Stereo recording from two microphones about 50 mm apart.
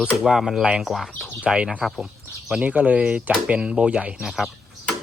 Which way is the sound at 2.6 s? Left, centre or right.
Right.